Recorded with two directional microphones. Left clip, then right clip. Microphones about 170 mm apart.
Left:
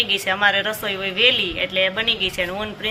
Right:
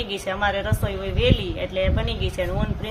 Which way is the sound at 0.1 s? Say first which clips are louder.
Left 6 dB; 20° right (ahead or behind).